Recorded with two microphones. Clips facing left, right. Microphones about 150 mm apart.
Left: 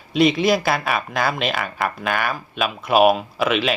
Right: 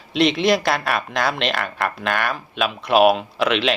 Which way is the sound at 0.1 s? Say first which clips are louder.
Left 1 dB; centre (ahead or behind).